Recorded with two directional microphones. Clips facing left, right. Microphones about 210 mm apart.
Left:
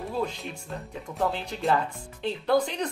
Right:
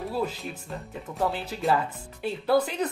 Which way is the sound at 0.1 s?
5° right (ahead or behind).